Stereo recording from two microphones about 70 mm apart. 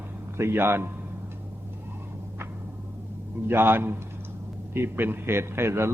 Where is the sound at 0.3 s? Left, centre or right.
Right.